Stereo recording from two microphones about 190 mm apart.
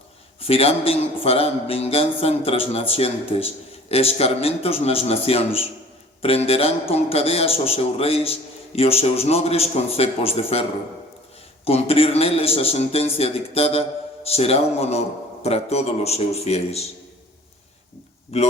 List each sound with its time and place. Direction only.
0.3 s a man's voice: 30° left (ahead or behind)
11.6 s a man's voice: 30° left (ahead or behind)
18.3 s a man's voice: 35° left (ahead or behind)